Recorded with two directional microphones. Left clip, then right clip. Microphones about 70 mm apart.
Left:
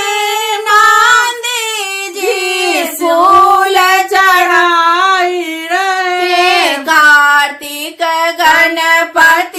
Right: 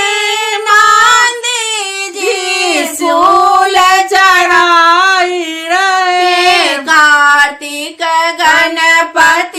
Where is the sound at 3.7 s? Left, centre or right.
Left.